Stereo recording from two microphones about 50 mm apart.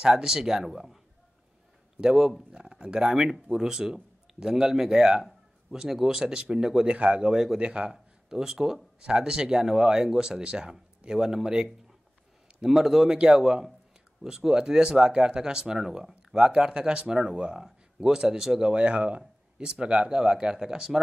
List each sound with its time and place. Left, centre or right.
0.0 s speech: centre
2.0 s speech: centre